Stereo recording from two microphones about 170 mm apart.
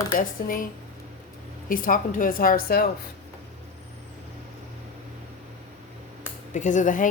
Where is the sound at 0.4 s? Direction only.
55° left (ahead or behind).